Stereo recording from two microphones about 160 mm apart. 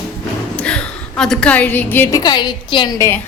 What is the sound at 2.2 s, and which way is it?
Speech, 25° left (ahead or behind).